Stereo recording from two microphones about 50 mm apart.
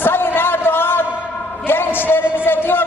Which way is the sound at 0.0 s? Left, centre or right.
Left.